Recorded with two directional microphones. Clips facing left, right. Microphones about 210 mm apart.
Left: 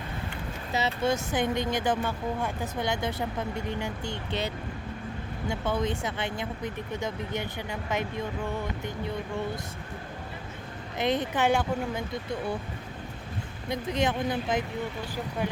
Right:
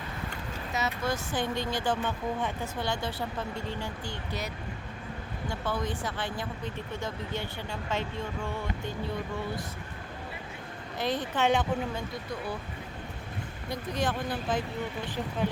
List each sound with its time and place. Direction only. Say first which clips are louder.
0.7 s speech: left 4 dB; 30° left (ahead or behind)
10.9 s speech: left 3 dB; 20° left (ahead or behind)
11.4 s speech: right 1 dB; 10° left (ahead or behind)
13.7 s speech: left 4 dB; 20° left (ahead or behind)
15.0 s speech: even; 10° left (ahead or behind)